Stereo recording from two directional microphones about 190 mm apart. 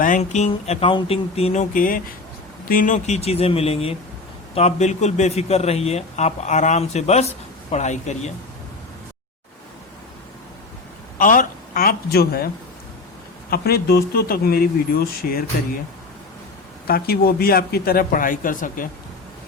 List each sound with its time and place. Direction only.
0.0 s a man's voice: 40° left (ahead or behind)
11.2 s a man's voice: 45° left (ahead or behind)
13.5 s a man's voice: 55° left (ahead or behind)
16.8 s a man's voice: 50° left (ahead or behind)